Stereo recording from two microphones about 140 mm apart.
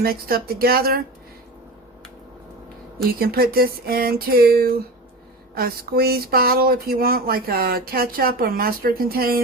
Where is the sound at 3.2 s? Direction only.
90° right.